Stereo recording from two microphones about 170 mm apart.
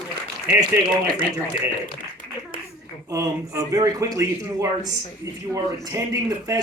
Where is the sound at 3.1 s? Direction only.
20° right (ahead or behind).